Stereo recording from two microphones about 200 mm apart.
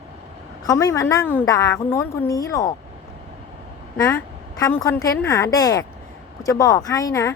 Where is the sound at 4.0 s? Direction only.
15° left (ahead or behind).